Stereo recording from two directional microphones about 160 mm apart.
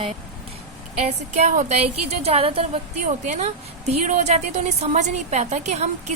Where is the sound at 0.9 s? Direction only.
40° right (ahead or behind).